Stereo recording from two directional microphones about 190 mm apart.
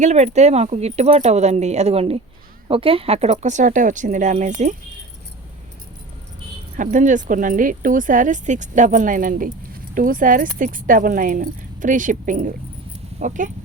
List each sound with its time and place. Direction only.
0.0 s speech: 35° right (ahead or behind)
6.7 s speech: 40° right (ahead or behind)